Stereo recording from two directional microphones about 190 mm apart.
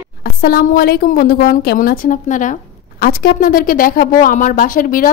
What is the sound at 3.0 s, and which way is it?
A woman's voice, 55° left (ahead or behind).